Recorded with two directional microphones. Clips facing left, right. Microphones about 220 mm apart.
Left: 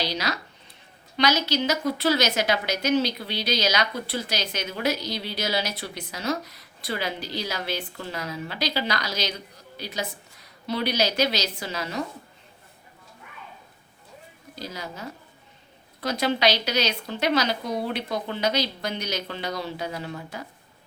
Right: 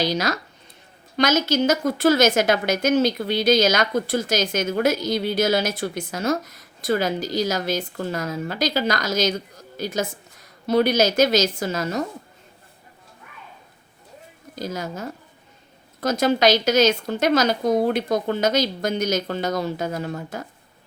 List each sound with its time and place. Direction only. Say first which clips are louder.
0.0 s a woman's voice: right 6 dB; 45° right (ahead or behind)
14.5 s a woman's voice: right 7 dB; 45° right (ahead or behind)